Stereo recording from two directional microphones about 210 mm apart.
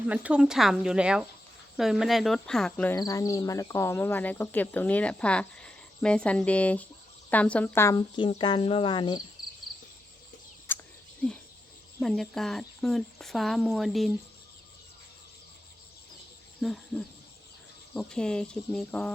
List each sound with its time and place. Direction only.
0.0 s speech: 5° right (ahead or behind); by 9.2 s 20° left (ahead or behind)
10.7 s cricket: 10° left (ahead or behind)
11.9 s speech: centre (ahead or behind)
16.6 s speech: centre (ahead or behind)